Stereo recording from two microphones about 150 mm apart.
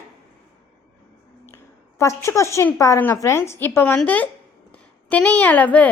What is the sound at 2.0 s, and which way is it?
Speech, 20° left (ahead or behind).